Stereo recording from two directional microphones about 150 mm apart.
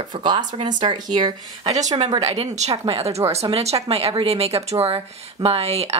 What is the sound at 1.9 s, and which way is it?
Speech, 45° right (ahead or behind).